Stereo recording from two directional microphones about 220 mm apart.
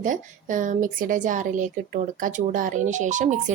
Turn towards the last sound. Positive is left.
turn(degrees=-35)  # may be behind; listen again after turning